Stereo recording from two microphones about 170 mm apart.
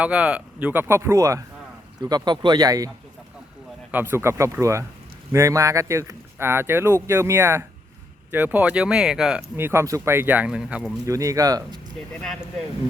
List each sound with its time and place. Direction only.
0.0 s speech: 5° right (ahead or behind)
3.9 s speech: 15° right (ahead or behind)
9.6 s speech: 15° right (ahead or behind)
11.0 s speech: 20° right (ahead or behind)
11.9 s speech: 5° left (ahead or behind)